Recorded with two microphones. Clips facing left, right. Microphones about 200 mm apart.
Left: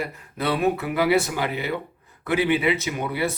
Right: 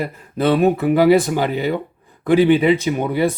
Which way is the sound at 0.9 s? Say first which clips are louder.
Right 8 dB; 40° right (ahead or behind).